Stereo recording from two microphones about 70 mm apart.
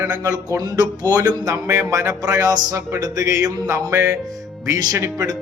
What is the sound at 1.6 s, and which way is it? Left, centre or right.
Speech, right.